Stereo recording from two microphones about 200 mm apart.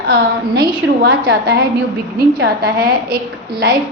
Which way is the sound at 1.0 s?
50° right (ahead or behind).